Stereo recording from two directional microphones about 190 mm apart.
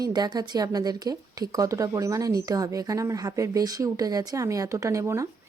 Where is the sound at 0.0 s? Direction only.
20° right (ahead or behind).